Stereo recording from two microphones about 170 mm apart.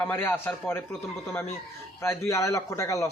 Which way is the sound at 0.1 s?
10° left (ahead or behind).